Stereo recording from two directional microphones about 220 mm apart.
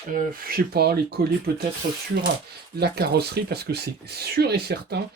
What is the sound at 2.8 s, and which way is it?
Speech, 45° right (ahead or behind).